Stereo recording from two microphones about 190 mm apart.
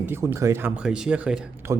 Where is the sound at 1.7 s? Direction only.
15° right (ahead or behind).